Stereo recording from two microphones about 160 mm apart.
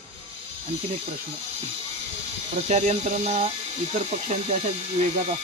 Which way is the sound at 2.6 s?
45° right (ahead or behind).